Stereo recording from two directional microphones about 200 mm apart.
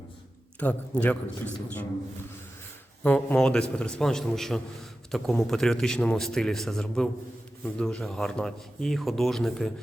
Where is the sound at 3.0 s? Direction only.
5° left (ahead or behind).